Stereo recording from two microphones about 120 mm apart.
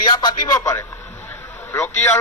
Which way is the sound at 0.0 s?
35° left (ahead or behind).